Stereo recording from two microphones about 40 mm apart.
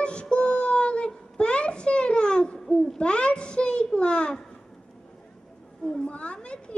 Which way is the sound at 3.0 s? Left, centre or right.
Left.